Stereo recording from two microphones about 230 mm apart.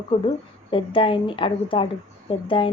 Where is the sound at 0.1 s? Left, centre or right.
Left.